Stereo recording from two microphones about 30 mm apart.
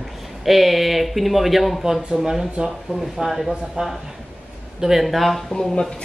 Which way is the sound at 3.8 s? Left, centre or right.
Right.